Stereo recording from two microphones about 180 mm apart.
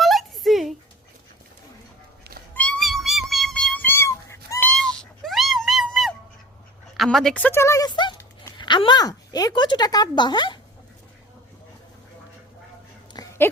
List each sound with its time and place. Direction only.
0.0 s a sound: centre (ahead or behind)
2.3 s cat: 60° right (ahead or behind)
2.6 s cat: 5° left (ahead or behind)
4.7 s music: 5° left (ahead or behind)
6.9 s a woman's voice: centre (ahead or behind); by 10.6 s 25° left (ahead or behind)
13.2 s a sound: 20° left (ahead or behind)